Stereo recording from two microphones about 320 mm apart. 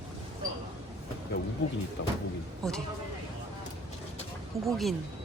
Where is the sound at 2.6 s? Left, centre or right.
Centre.